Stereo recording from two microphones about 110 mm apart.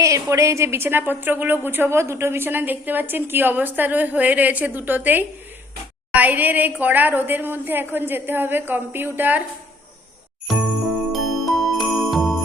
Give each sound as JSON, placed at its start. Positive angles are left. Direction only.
{"t": 0.0, "sound": "a woman's voice", "side_deg": -30}
{"t": 11.1, "sound": "jingle bell", "side_deg": 0}